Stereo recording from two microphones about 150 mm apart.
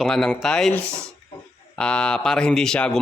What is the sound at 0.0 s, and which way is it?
Speech, 5° left (ahead or behind).